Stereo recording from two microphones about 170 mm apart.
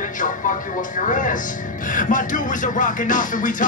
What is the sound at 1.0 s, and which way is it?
Music, 50° left (ahead or behind).